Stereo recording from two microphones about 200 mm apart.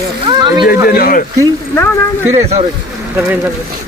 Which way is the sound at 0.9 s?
45° left (ahead or behind).